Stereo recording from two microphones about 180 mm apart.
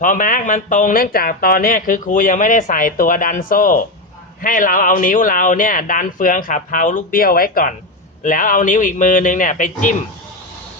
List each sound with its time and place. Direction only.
0.0 s speech: 50° left (ahead or behind)